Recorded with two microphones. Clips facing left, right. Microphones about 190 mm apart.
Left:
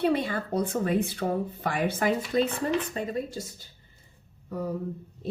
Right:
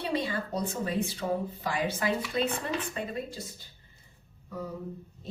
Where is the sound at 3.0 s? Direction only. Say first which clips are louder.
Left 4 dB; 40° left (ahead or behind).